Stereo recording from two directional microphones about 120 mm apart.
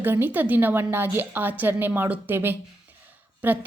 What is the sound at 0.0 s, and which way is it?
A woman's voice, 20° right (ahead or behind).